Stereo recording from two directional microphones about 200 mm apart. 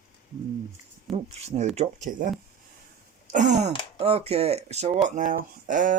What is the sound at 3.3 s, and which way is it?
Speech, 35° right (ahead or behind).